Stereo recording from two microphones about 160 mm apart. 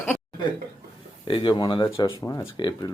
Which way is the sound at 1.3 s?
30° left (ahead or behind).